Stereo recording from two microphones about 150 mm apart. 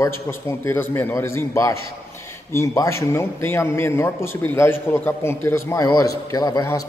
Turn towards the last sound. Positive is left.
turn(degrees=25)  # may be behind; listen again after turning